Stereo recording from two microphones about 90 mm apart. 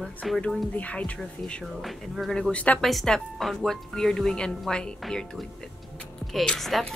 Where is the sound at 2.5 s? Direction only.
15° left (ahead or behind).